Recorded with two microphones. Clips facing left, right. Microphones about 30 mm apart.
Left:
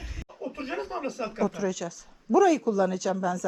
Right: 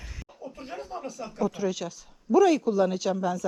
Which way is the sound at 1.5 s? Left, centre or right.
Centre.